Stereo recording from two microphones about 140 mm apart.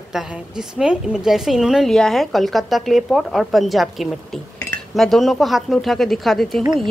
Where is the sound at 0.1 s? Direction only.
5° right (ahead or behind).